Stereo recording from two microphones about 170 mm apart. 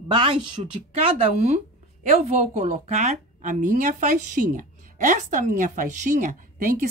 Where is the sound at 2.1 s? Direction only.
45° right (ahead or behind).